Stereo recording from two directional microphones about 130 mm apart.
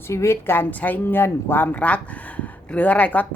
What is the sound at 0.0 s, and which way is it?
A woman's voice, 20° left (ahead or behind).